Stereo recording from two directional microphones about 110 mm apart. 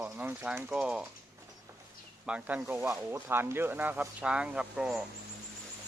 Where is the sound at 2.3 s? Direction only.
10° right (ahead or behind).